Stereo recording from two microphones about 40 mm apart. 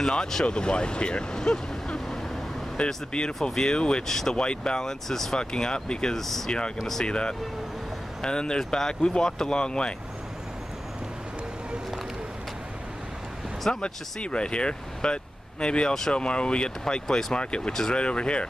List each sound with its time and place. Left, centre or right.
0.1 s speech: centre
3.1 s speech: left
4.1 s speech: centre
4.4 s speech: left
5.4 s speech: centre
6.1 s speech: centre
7.1 s speech: left
13.7 s speech: left